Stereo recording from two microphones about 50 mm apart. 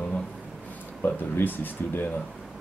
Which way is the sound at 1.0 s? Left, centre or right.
Left.